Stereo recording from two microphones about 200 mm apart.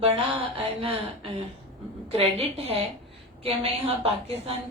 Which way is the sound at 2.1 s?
30° right (ahead or behind).